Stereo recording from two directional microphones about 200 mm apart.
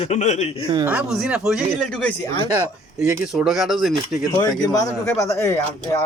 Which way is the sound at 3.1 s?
5° right (ahead or behind).